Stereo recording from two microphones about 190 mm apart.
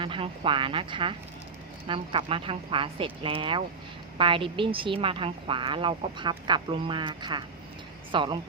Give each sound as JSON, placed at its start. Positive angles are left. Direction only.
{"t": 0.0, "sound": "speech", "side_deg": -25}